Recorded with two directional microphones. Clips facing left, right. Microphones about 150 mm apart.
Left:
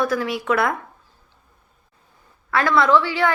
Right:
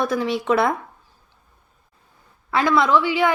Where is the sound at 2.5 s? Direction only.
15° right (ahead or behind).